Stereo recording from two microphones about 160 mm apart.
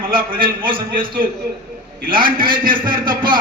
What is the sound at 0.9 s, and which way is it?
Speech, 60° right (ahead or behind).